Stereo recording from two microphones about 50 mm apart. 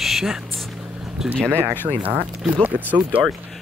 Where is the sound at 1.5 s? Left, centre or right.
Right.